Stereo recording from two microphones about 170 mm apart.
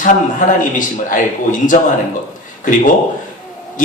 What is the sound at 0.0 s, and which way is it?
A man's voice, 50° left (ahead or behind).